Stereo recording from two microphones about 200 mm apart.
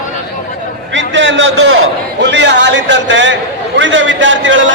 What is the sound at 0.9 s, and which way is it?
A man's voice, 65° right (ahead or behind).